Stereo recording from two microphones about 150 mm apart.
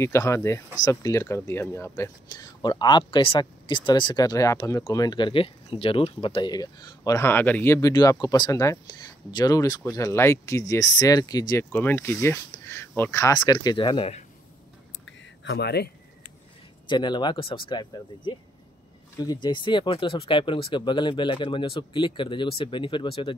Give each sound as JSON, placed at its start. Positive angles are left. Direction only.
{"t": 0.0, "sound": "speech", "side_deg": 20}
{"t": 11.7, "sound": "speech", "side_deg": 15}
{"t": 15.4, "sound": "speech", "side_deg": 90}
{"t": 16.8, "sound": "speech", "side_deg": 30}